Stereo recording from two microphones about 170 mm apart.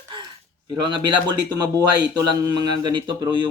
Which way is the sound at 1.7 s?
20° right (ahead or behind).